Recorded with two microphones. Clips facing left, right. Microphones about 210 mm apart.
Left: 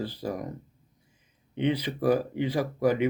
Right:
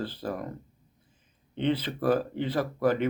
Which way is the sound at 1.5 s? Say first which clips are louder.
Left 1 dB; 10° left (ahead or behind).